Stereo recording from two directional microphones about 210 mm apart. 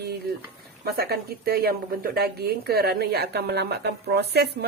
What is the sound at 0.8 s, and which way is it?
Speech, 45° right (ahead or behind).